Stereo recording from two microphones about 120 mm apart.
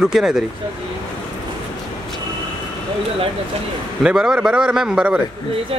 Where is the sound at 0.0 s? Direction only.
5° right (ahead or behind).